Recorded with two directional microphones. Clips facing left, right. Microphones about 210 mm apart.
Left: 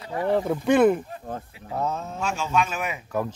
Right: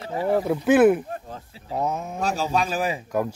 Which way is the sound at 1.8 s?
15° right (ahead or behind).